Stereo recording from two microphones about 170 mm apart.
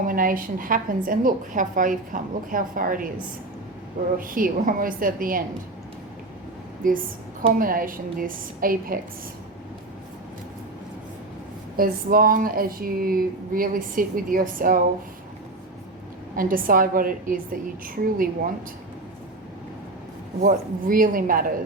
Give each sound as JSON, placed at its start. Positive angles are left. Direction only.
{"t": 0.0, "sound": "a woman's voice", "side_deg": -55}
{"t": 4.2, "sound": "speech", "side_deg": -55}
{"t": 6.8, "sound": "a woman's voice", "side_deg": -50}
{"t": 11.8, "sound": "speech", "side_deg": -60}
{"t": 16.3, "sound": "speech", "side_deg": -55}
{"t": 20.5, "sound": "speech", "side_deg": -55}